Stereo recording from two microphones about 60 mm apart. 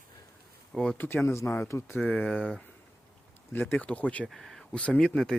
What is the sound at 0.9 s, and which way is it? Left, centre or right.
Speech, left.